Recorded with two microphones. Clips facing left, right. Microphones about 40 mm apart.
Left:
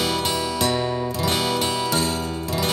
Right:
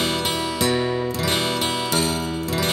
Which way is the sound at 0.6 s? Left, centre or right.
Centre.